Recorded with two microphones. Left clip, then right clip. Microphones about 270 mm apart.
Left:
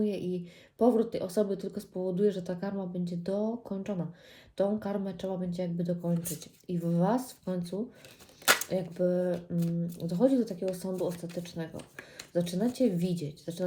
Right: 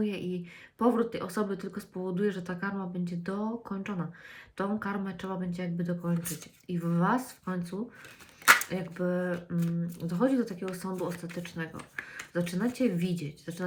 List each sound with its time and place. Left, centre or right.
0.0 s speech: centre
8.7 s speech: centre